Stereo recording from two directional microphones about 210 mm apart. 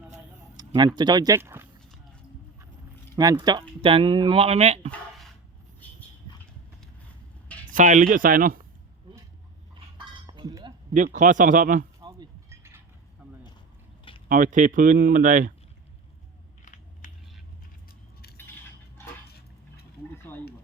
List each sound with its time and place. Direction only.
0.5 s speech: 20° right (ahead or behind)
3.2 s speech: 20° right (ahead or behind)
4.9 s a sound: centre (ahead or behind)
7.7 s speech: 35° right (ahead or behind)
9.7 s cutlery: 20° right (ahead or behind)
10.9 s speech: 35° right (ahead or behind)
11.9 s chink: 20° right (ahead or behind)
13.2 s a sound: 5° right (ahead or behind)
14.3 s speech: 40° right (ahead or behind)
16.6 s biting: 35° left (ahead or behind)
20.3 s a sound: 10° left (ahead or behind)